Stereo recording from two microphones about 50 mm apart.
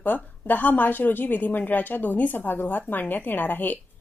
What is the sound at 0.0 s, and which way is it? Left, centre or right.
Speech, left.